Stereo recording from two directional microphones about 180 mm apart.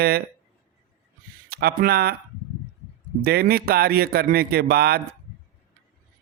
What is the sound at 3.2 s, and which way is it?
A man's voice, 55° right (ahead or behind).